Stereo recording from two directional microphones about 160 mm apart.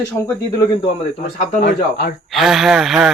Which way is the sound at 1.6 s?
70° left (ahead or behind).